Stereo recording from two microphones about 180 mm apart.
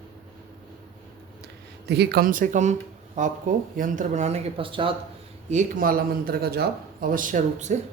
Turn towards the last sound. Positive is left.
turn(degrees=-45)  # may be behind; listen again after turning